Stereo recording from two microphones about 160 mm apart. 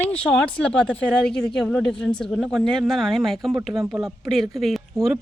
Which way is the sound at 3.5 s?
20° right (ahead or behind).